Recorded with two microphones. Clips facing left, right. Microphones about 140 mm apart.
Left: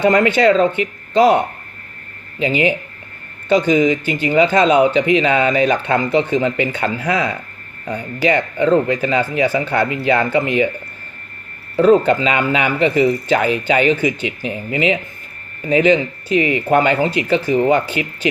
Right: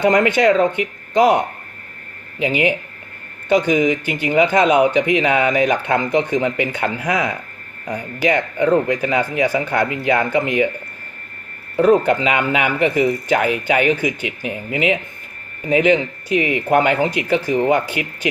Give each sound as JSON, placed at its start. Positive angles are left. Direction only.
{"t": 0.0, "sound": "speech", "side_deg": -15}
{"t": 2.4, "sound": "speech", "side_deg": -15}
{"t": 11.8, "sound": "speech", "side_deg": -15}